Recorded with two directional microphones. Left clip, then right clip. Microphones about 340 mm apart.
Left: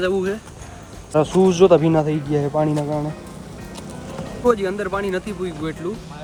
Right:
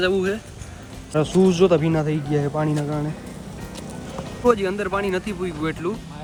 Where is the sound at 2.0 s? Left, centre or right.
Centre.